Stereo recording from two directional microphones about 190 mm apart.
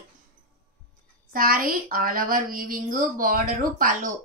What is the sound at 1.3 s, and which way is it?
A woman's voice, 50° right (ahead or behind).